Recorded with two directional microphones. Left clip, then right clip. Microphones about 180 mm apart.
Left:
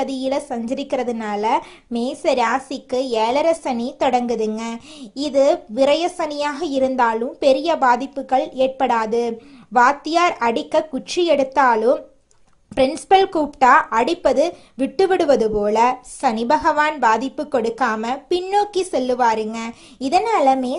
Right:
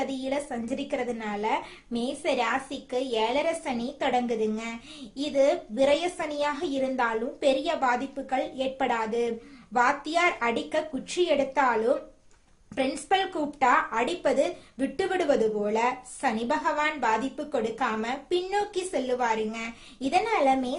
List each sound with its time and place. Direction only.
0.1 s speech: 40° left (ahead or behind)